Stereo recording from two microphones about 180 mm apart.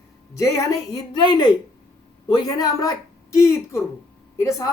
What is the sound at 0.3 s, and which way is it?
Speech, 20° left (ahead or behind).